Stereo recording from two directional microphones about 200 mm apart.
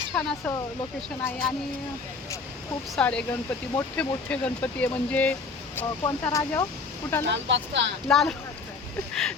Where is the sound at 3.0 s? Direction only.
5° left (ahead or behind).